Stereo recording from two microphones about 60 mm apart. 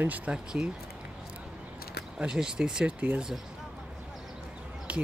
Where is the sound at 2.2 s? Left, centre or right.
Centre.